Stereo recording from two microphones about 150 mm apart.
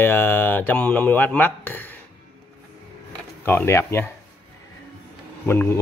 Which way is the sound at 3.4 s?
15° left (ahead or behind).